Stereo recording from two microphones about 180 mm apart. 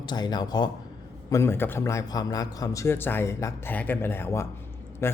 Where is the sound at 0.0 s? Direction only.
25° left (ahead or behind).